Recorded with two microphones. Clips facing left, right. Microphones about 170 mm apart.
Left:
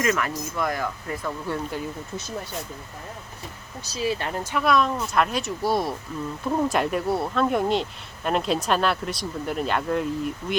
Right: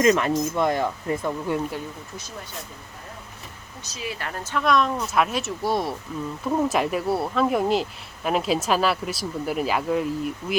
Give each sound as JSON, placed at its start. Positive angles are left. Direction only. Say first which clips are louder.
{"t": 0.0, "sound": "speech", "louder": "right 6 dB", "side_deg": -25}
{"t": 3.9, "sound": "speech", "louder": "left 6 dB", "side_deg": 30}